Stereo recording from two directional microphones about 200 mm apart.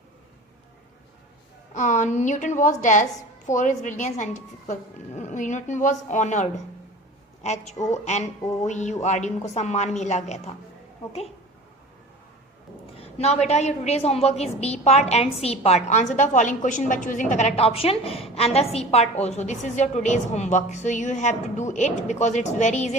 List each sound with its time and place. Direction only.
1.7 s a woman's voice: 40° left (ahead or behind)
13.0 s a woman's voice: 30° left (ahead or behind)